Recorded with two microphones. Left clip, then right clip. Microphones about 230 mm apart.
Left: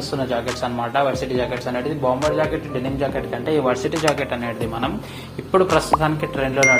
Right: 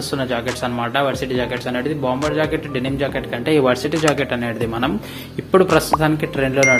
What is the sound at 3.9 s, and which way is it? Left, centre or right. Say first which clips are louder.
Speech: right 2 dB; centre.